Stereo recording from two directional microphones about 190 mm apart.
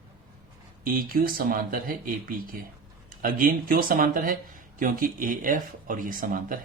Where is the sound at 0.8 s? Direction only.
50° right (ahead or behind).